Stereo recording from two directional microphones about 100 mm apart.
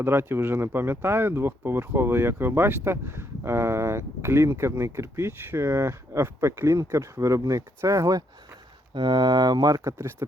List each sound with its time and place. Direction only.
0.0 s speech: 25° right (ahead or behind)
9.0 s speech: 45° right (ahead or behind)